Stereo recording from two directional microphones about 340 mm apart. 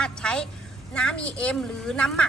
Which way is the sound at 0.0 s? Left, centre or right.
Centre.